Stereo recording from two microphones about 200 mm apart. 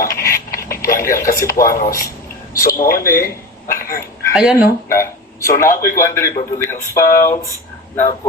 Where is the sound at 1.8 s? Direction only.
15° left (ahead or behind).